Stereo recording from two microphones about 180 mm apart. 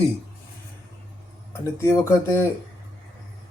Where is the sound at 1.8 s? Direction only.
15° left (ahead or behind).